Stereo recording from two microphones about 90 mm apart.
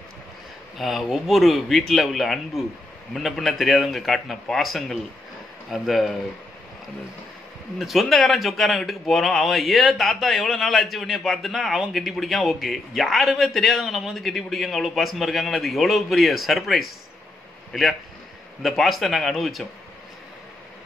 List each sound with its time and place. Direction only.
0.7 s a man's voice: centre (ahead or behind)
7.8 s a man's voice: centre (ahead or behind)
18.6 s a man's voice: centre (ahead or behind)